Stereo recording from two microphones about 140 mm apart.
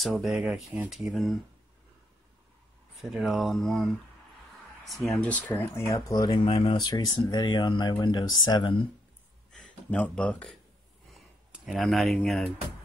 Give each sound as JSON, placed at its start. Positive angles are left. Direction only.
{"t": 0.1, "sound": "speech", "side_deg": -5}
{"t": 3.0, "sound": "speech", "side_deg": -5}
{"t": 5.1, "sound": "speech", "side_deg": 10}
{"t": 6.4, "sound": "speech", "side_deg": 45}
{"t": 6.8, "sound": "speech", "side_deg": 30}
{"t": 9.5, "sound": "a sound", "side_deg": 5}
{"t": 11.5, "sound": "speech", "side_deg": 0}